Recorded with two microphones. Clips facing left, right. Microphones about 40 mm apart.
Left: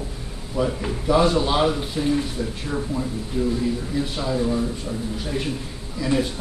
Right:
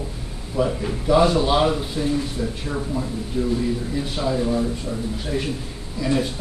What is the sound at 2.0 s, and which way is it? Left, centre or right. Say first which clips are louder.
Speech: left 1 dB; left.